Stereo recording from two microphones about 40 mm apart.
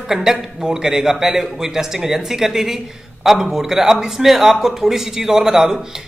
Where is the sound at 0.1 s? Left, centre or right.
Centre.